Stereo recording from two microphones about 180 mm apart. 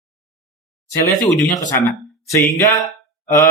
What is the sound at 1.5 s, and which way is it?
Speech, 20° left (ahead or behind).